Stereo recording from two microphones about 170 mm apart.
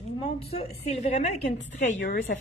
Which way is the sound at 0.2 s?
35° left (ahead or behind).